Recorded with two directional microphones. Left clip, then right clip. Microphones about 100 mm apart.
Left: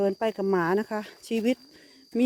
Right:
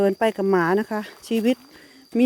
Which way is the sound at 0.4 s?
15° right (ahead or behind).